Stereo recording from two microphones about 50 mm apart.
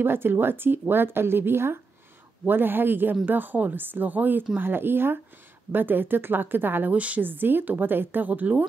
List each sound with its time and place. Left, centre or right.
0.0 s a woman's voice: right
6.9 s a woman's voice: right
7.2 s a woman's voice: right